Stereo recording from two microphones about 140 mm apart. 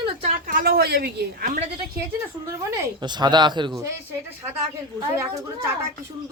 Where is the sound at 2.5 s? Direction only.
25° right (ahead or behind).